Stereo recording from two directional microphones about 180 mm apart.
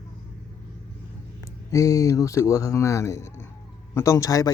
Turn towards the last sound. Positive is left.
turn(degrees=20)  # may be behind; listen again after turning